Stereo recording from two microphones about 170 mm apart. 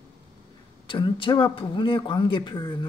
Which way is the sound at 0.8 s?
30° left (ahead or behind).